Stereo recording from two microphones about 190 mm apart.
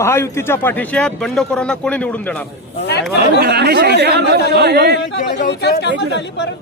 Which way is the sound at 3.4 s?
60° right (ahead or behind).